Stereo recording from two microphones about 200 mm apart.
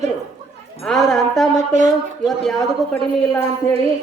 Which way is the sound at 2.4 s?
5° left (ahead or behind).